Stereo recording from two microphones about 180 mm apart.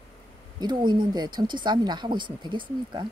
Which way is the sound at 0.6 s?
25° right (ahead or behind).